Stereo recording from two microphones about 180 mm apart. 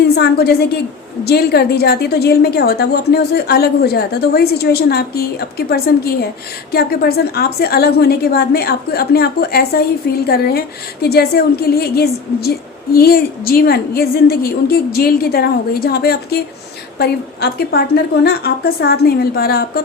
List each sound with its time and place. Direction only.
0.1 s a woman's voice: 60° left (ahead or behind)